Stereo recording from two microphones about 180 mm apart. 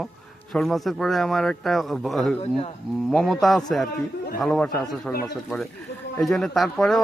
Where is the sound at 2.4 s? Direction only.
35° left (ahead or behind).